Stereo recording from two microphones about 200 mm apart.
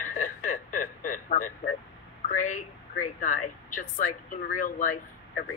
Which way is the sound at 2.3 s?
40° left (ahead or behind).